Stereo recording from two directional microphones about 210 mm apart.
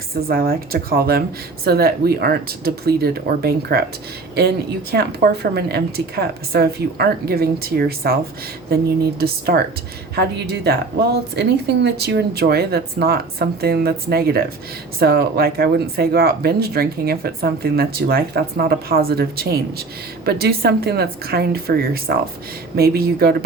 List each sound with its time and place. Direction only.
0.1 s speech: 45° right (ahead or behind)